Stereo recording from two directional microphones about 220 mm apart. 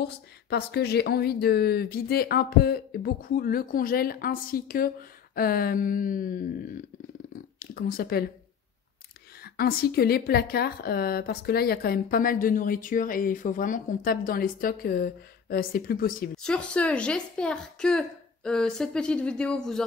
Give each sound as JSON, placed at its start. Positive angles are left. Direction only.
{"t": 0.0, "sound": "speech", "side_deg": 45}
{"t": 7.5, "sound": "speech", "side_deg": 40}
{"t": 9.4, "sound": "a woman's voice", "side_deg": 45}
{"t": 16.4, "sound": "a woman's voice", "side_deg": 5}